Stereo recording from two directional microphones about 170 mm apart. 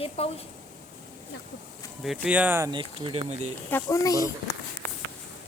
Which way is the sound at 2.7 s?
30° right (ahead or behind).